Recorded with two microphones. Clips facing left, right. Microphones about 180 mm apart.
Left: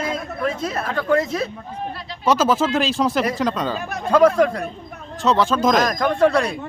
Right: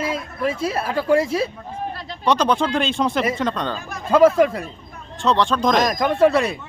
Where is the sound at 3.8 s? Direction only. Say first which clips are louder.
Left 5 dB; 65° left (ahead or behind).